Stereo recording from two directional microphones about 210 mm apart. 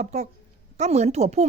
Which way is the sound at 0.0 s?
35° right (ahead or behind).